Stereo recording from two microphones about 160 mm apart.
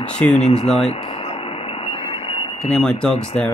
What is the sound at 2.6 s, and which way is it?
Speech, 5° left (ahead or behind).